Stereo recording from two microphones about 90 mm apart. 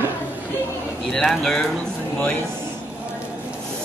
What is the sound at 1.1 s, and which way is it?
Speech, 5° left (ahead or behind).